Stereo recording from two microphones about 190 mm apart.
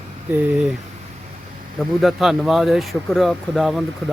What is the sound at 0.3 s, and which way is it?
Speech, 10° right (ahead or behind).